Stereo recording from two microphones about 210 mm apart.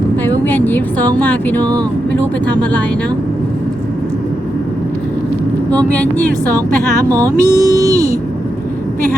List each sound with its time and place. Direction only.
0.3 s speech: 10° left (ahead or behind)
1.6 s speech: 20° right (ahead or behind)
5.7 s speech: 5° left (ahead or behind)
7.1 s mantra: 15° right (ahead or behind)